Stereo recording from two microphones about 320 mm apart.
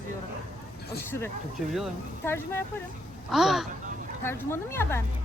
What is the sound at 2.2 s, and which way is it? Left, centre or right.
Speech, centre.